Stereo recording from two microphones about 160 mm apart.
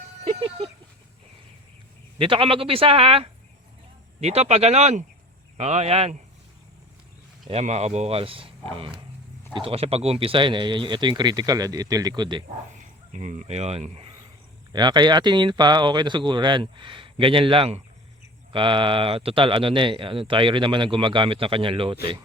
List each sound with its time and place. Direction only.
2.1 s speech: 35° right (ahead or behind)
7.6 s speech: 45° right (ahead or behind); by 12.4 s 25° right (ahead or behind)
12.8 s speech: 50° right (ahead or behind)
14.7 s speech: 25° right (ahead or behind)